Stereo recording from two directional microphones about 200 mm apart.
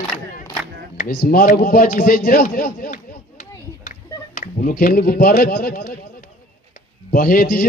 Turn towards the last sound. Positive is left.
turn(degrees=45)  # may be behind; listen again after turning